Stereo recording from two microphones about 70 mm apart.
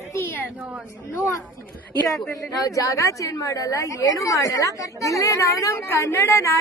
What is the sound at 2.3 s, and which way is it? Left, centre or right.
A woman's voice, left.